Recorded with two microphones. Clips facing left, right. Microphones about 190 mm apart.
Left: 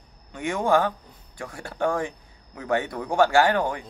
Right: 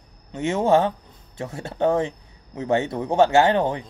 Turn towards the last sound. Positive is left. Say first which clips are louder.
# right 3 dB
turn(degrees=-25)  # may be behind; listen again after turning